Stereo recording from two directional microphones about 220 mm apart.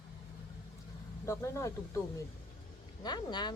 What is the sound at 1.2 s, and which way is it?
Speech, 10° left (ahead or behind).